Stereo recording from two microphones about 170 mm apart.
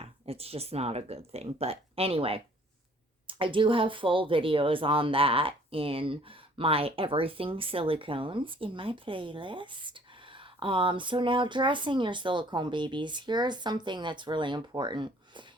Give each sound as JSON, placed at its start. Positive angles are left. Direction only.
{"t": 0.0, "sound": "speech", "side_deg": -35}